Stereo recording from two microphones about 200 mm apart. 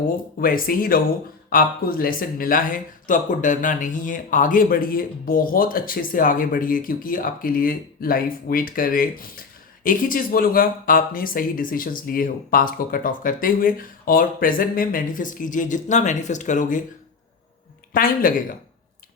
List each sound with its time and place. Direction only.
0.3 s speech: 45° left (ahead or behind)
17.9 s speech: 45° left (ahead or behind)